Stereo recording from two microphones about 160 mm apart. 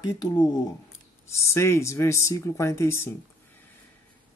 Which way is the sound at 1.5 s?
15° left (ahead or behind).